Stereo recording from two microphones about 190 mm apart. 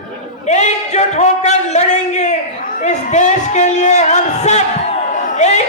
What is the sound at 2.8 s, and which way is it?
Music, 40° left (ahead or behind).